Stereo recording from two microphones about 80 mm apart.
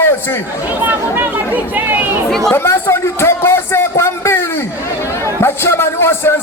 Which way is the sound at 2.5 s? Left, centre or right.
Left.